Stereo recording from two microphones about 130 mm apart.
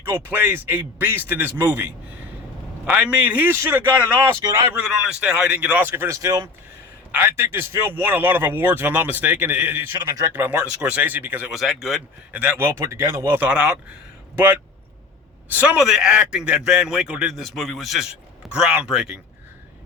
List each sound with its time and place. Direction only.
0.0 s a man's voice: 15° right (ahead or behind)
2.8 s a man's voice: 10° right (ahead or behind)
4.7 s a man's voice: 10° right (ahead or behind)
11.5 s a man's voice: centre (ahead or behind)
12.4 s a man's voice: 15° right (ahead or behind)
15.6 s a man's voice: 5° right (ahead or behind)